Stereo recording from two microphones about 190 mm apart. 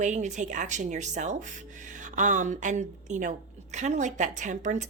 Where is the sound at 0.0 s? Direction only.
40° right (ahead or behind).